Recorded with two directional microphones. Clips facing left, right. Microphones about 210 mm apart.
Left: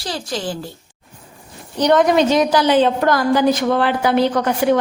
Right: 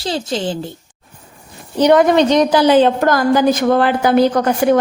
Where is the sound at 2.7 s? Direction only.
45° right (ahead or behind).